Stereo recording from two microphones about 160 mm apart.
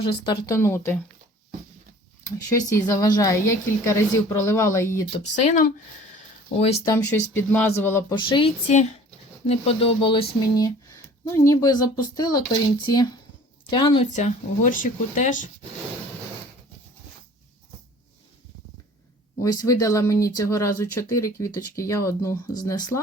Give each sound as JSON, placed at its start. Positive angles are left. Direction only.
{"t": 0.0, "sound": "speech", "side_deg": 30}
{"t": 2.6, "sound": "speech", "side_deg": 20}
{"t": 5.2, "sound": "speech", "side_deg": 45}
{"t": 6.6, "sound": "speech", "side_deg": 40}
{"t": 6.8, "sound": "speech", "side_deg": 15}
{"t": 8.1, "sound": "speech", "side_deg": 30}
{"t": 9.5, "sound": "speech", "side_deg": 40}
{"t": 10.4, "sound": "speech", "side_deg": 20}
{"t": 14.1, "sound": "speech", "side_deg": 50}
{"t": 19.4, "sound": "speech", "side_deg": 20}